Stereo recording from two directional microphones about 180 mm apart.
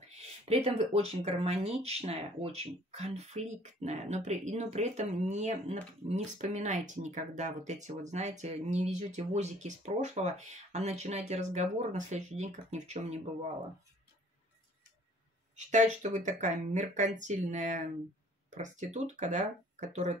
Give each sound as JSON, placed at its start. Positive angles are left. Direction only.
{"t": 0.1, "sound": "speech", "side_deg": -35}
{"t": 15.5, "sound": "speech", "side_deg": -40}